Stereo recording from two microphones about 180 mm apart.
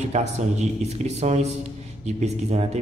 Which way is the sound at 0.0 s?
40° right (ahead or behind).